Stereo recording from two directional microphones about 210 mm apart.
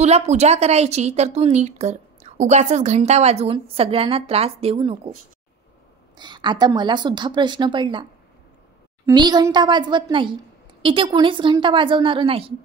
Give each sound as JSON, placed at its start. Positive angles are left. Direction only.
{"t": 0.0, "sound": "a woman's voice", "side_deg": -30}
{"t": 6.1, "sound": "a woman's voice", "side_deg": -20}
{"t": 9.0, "sound": "a woman's voice", "side_deg": -20}